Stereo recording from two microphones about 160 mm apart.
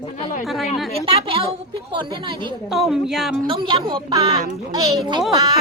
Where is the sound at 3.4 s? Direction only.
35° right (ahead or behind).